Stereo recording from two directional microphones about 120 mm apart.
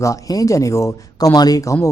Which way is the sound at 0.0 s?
30° left (ahead or behind).